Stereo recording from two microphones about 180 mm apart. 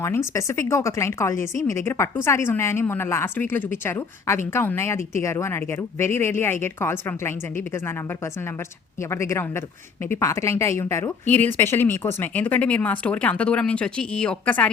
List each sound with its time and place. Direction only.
0.0 s a woman's voice: 15° left (ahead or behind)